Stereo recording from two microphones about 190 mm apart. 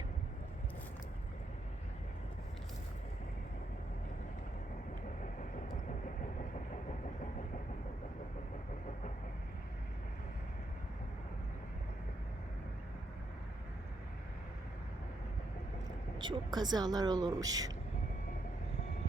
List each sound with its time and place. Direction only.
16.1 s speech: 25° right (ahead or behind)